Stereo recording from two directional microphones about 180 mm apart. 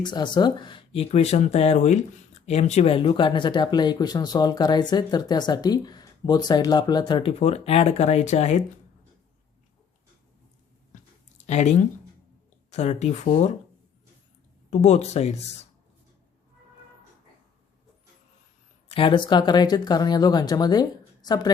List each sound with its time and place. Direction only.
0.0 s speech: 25° left (ahead or behind)
11.4 s speech: 40° left (ahead or behind)
14.7 s speech: 40° left (ahead or behind)
18.9 s speech: 30° left (ahead or behind)